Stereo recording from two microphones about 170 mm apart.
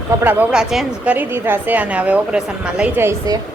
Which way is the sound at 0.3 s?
5° right (ahead or behind).